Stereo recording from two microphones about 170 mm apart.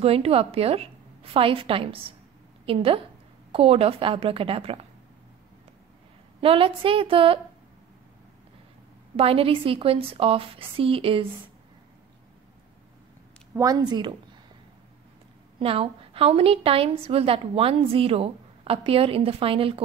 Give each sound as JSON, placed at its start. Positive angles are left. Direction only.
{"t": 0.0, "sound": "a woman's voice", "side_deg": -35}
{"t": 6.4, "sound": "a woman's voice", "side_deg": -30}
{"t": 9.1, "sound": "a woman's voice", "side_deg": -35}
{"t": 13.6, "sound": "a woman's voice", "side_deg": -20}
{"t": 15.6, "sound": "a woman's voice", "side_deg": -35}